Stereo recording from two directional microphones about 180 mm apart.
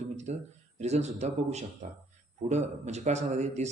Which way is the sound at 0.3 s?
40° right (ahead or behind).